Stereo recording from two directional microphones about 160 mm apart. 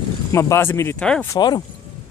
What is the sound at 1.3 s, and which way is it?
Speech, 25° left (ahead or behind).